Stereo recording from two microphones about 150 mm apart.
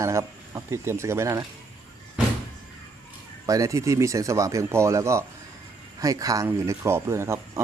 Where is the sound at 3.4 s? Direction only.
20° right (ahead or behind).